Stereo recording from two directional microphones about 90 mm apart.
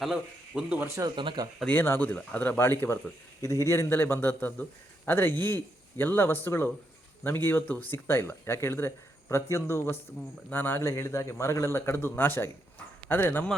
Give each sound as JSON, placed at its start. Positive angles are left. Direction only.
{"t": 0.0, "sound": "speech", "side_deg": -5}
{"t": 1.1, "sound": "speech", "side_deg": -65}
{"t": 1.6, "sound": "a man's voice", "side_deg": 20}